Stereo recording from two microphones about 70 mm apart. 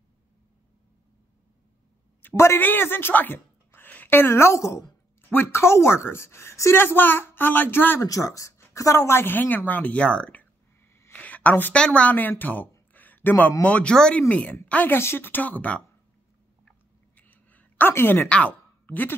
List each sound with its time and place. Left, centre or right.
2.3 s a woman's voice: left
2.6 s a woman's voice: left
5.3 s a woman's voice: left
8.0 s a woman's voice: left
10.9 s a sound: left
11.1 s a sound: left
11.7 s a woman's voice: centre
16.6 s a sound: left
18.3 s a woman's voice: left